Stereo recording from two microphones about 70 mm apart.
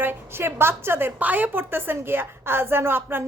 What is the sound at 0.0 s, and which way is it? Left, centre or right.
A woman's voice, right.